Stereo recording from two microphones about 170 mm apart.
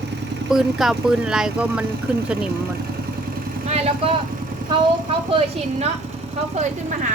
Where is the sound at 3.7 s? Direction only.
40° right (ahead or behind).